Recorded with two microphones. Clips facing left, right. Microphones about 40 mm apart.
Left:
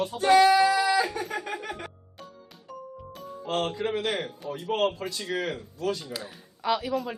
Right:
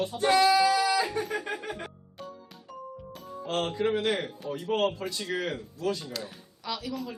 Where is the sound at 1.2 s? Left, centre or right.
Centre.